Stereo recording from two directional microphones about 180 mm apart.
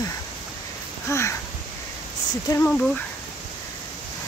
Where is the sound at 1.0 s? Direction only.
15° left (ahead or behind).